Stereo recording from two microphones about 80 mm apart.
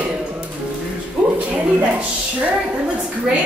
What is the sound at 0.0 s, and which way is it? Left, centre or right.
Music, centre.